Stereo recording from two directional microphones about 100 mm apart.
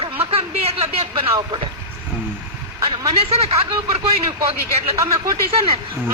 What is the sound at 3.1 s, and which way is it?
Speech, 90° right.